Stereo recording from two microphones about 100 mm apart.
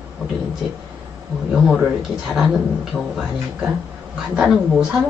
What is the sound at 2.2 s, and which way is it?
Speech, 5° right (ahead or behind).